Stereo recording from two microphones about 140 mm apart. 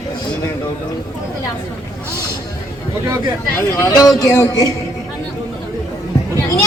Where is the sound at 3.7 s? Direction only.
20° left (ahead or behind).